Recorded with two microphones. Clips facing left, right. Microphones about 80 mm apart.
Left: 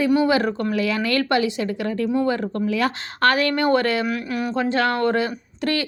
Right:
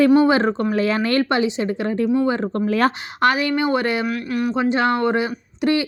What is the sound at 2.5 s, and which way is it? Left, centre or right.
Speech, right.